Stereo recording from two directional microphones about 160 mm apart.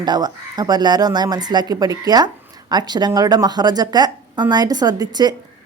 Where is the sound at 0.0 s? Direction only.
25° right (ahead or behind).